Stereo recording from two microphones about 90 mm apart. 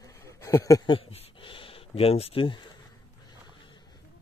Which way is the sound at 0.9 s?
80° left.